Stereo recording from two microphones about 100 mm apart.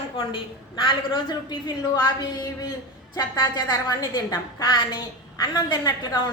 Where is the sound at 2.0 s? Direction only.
40° left (ahead or behind).